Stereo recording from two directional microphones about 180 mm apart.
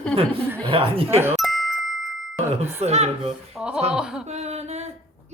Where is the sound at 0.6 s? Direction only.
30° right (ahead or behind).